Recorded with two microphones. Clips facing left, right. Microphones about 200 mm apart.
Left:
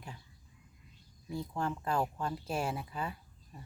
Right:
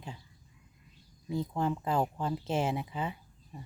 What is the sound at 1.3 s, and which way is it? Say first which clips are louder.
Speech: right 5 dB; 20° right (ahead or behind).